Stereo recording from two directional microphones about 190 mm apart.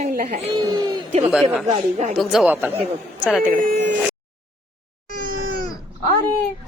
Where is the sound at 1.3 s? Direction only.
5° right (ahead or behind).